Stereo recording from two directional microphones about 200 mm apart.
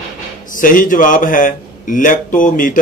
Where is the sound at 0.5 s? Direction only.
45° left (ahead or behind).